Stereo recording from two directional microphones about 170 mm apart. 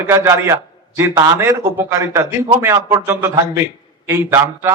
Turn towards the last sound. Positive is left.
turn(degrees=-15)  # may be behind; listen again after turning